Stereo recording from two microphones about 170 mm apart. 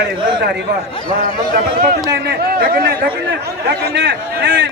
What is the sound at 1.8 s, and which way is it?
Speech, 70° right (ahead or behind).